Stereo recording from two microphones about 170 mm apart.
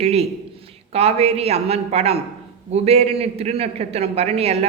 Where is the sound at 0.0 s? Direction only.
35° right (ahead or behind).